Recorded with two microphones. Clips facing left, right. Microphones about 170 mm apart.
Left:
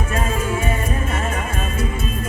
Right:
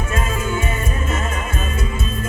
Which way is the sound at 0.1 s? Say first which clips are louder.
Left 1 dB; 30° left (ahead or behind).